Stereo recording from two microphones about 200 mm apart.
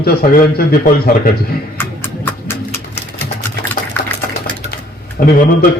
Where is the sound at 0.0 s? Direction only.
50° left (ahead or behind).